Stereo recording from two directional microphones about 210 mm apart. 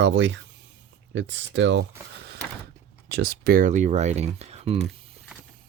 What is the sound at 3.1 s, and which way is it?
Speech, 50° right (ahead or behind).